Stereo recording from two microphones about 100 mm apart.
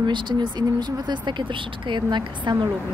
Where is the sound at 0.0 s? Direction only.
50° right (ahead or behind).